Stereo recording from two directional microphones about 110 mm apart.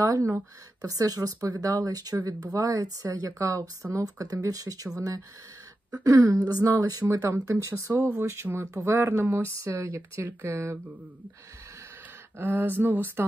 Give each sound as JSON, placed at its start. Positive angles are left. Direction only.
{"t": 0.0, "sound": "speech", "side_deg": -30}
{"t": 6.0, "sound": "speech", "side_deg": -30}
{"t": 12.4, "sound": "speech", "side_deg": -20}